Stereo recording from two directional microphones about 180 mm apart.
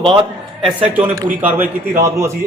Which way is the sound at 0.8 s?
10° right (ahead or behind).